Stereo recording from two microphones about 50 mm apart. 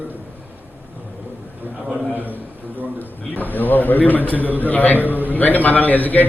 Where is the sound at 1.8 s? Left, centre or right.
Centre.